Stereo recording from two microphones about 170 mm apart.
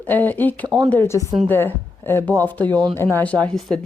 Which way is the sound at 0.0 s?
10° left (ahead or behind).